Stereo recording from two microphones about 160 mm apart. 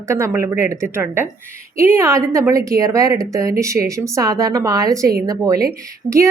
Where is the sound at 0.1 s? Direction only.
15° right (ahead or behind).